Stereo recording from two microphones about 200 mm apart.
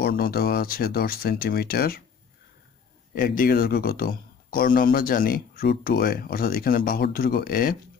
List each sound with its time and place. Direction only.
0.0 s speech: 50° left (ahead or behind)
3.2 s speech: 45° left (ahead or behind)